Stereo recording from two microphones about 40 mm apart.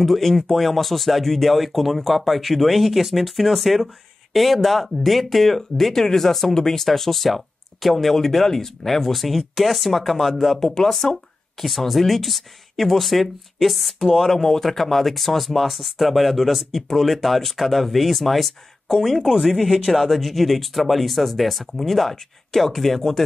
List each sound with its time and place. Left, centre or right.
0.0 s speech: centre
10.6 s speech: centre
11.6 s speech: centre